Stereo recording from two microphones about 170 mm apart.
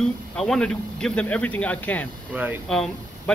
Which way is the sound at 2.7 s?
5° left (ahead or behind).